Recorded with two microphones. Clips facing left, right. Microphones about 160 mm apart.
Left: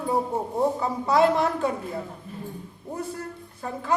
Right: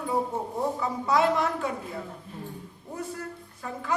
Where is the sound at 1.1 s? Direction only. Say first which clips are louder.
Left 3 dB; 30° left (ahead or behind).